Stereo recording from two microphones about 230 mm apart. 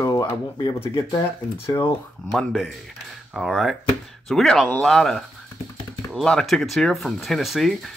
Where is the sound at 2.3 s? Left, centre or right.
Centre.